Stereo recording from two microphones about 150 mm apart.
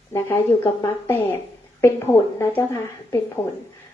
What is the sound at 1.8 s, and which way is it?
A woman's voice, 15° left (ahead or behind).